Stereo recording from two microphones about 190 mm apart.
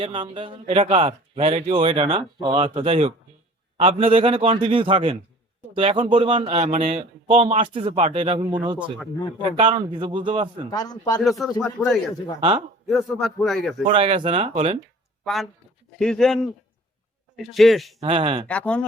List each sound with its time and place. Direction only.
0.0 s speech: 25° right (ahead or behind)
9.6 s speech: 25° right (ahead or behind)
10.7 s speech: 20° left (ahead or behind)
11.2 s speech: centre (ahead or behind)
11.8 s speech: 10° left (ahead or behind)
12.4 s speech: 25° right (ahead or behind)
12.9 s speech: centre (ahead or behind)
13.8 s speech: 25° right (ahead or behind)
15.2 s speech: centre (ahead or behind)
18.0 s speech: 30° right (ahead or behind)
18.4 s speech: 5° left (ahead or behind)